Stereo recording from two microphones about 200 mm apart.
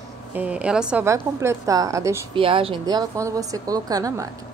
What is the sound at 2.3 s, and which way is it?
A woman's voice, 25° right (ahead or behind).